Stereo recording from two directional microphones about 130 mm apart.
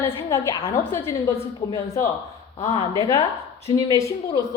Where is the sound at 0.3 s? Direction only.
20° left (ahead or behind).